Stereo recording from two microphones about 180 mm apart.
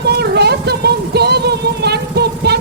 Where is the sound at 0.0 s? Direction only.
65° right (ahead or behind).